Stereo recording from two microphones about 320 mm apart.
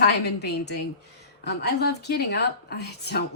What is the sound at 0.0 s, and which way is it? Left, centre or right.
A woman's voice, left.